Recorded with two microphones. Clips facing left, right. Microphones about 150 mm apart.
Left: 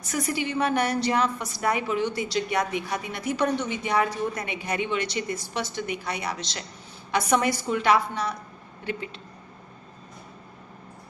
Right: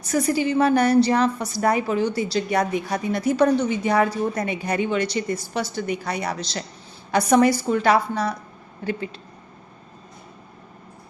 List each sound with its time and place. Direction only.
0.1 s a woman's voice: 35° right (ahead or behind)